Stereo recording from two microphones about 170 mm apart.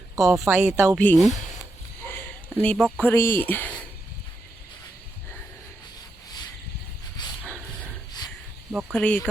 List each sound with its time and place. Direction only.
0.2 s speech: centre (ahead or behind)
0.4 s speech: 15° right (ahead or behind)
0.9 s speech: 5° left (ahead or behind)
2.6 s speech: 5° left (ahead or behind)
7.2 s dog: 25° left (ahead or behind)
8.7 s speech: centre (ahead or behind)